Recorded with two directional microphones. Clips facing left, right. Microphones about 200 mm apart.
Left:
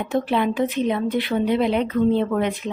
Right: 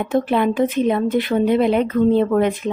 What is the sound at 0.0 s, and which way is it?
Speech, 50° right (ahead or behind).